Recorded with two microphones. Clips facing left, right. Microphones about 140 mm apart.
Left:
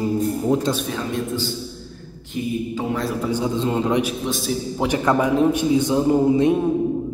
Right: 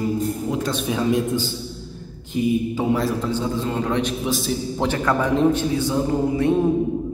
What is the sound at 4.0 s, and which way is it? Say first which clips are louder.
A man's voice: even; 5° left (ahead or behind).